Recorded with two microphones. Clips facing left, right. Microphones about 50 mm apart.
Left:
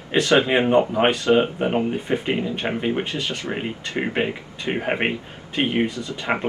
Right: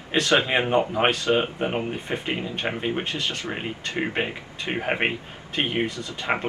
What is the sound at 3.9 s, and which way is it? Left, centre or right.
Speech, centre.